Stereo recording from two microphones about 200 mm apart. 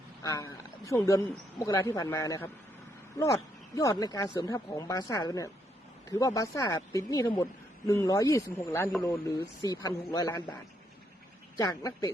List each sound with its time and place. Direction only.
0.2 s speech: 15° left (ahead or behind)
11.5 s speech: 20° left (ahead or behind)